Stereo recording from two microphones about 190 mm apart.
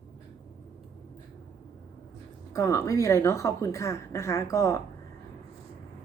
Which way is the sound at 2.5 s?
15° left (ahead or behind).